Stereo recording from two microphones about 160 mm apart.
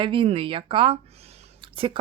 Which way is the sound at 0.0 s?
35° right (ahead or behind).